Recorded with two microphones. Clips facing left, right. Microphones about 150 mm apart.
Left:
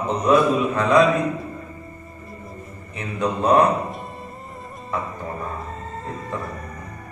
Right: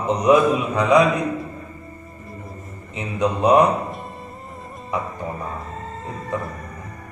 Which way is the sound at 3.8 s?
Centre (ahead or behind).